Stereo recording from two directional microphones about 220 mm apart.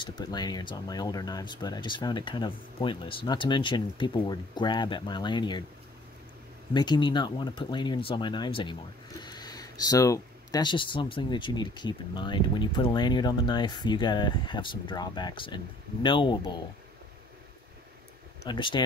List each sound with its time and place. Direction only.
0.0 s speech: 20° left (ahead or behind)
6.7 s speech: 20° left (ahead or behind)
18.4 s speech: 20° left (ahead or behind)